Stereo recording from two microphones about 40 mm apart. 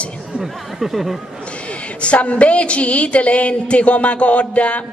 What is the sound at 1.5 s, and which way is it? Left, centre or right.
A woman's voice, left.